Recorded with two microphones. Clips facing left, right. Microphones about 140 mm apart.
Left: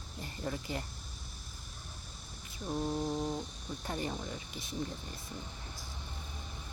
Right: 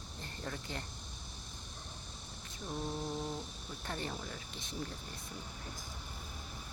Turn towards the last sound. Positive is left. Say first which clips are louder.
# left 4 dB
turn(degrees=5)  # may be behind; listen again after turning